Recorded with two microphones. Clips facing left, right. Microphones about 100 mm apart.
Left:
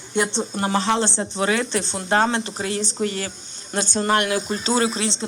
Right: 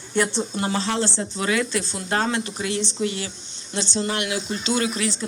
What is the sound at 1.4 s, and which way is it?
Speech, 30° left (ahead or behind).